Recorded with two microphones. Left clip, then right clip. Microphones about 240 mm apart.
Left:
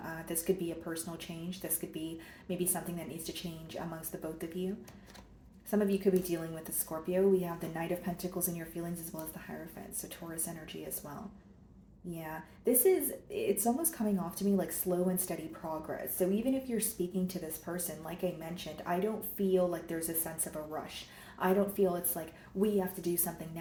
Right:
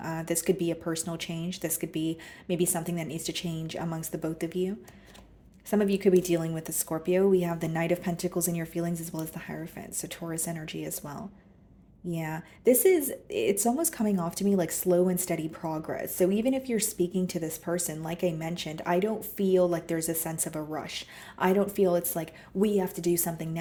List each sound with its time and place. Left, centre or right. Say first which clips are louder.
0.0 s speech: right 8 dB; right
5.7 s speech: right 6 dB; right
12.1 s speech: right 6 dB; right